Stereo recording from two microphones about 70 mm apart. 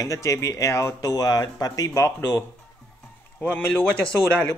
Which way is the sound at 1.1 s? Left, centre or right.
Left.